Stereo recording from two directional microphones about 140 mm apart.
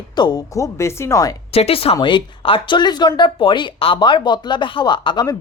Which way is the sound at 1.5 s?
45° left (ahead or behind).